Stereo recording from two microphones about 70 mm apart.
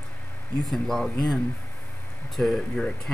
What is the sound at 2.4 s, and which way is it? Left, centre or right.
Speech, centre.